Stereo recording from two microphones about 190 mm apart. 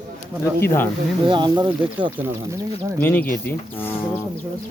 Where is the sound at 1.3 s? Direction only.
25° right (ahead or behind).